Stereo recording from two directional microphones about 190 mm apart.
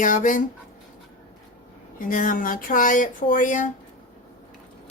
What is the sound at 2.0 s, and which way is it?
Speech, 45° left (ahead or behind).